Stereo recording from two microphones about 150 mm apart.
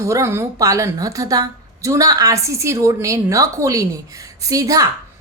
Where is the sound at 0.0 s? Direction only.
20° right (ahead or behind).